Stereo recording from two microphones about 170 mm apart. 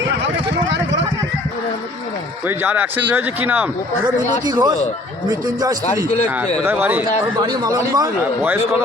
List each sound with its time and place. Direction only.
2.5 s speech: 10° right (ahead or behind)
4.4 s a man's voice: 25° right (ahead or behind)
6.7 s speech: 10° right (ahead or behind)
7.4 s a man's voice: 25° right (ahead or behind)